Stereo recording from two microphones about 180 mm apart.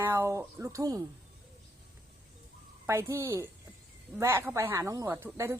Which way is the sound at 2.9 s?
15° right (ahead or behind).